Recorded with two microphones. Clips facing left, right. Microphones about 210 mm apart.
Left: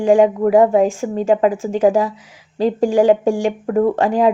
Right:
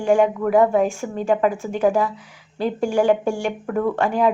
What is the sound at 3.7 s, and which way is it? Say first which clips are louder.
Speech: left 6 dB; 30° left (ahead or behind).